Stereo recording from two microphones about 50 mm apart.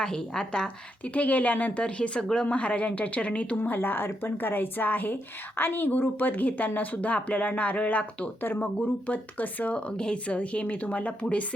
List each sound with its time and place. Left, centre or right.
0.0 s speech: centre
1.0 s a woman's voice: left
3.6 s a woman's voice: left
8.4 s a woman's voice: left
9.7 s a woman's voice: left